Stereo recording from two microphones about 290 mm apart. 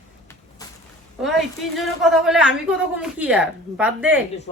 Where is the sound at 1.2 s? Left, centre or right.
Centre.